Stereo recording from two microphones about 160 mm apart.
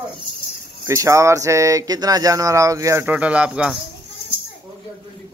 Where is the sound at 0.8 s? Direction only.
20° right (ahead or behind).